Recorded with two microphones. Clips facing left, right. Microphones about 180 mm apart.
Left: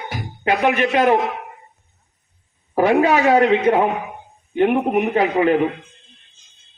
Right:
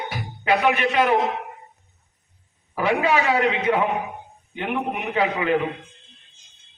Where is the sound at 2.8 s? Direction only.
50° left (ahead or behind).